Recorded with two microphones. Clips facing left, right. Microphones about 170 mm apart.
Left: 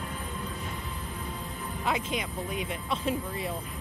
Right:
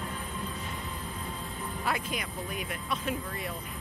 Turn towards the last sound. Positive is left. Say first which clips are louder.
# left 3 dB
turn(degrees=25)  # may be behind; listen again after turning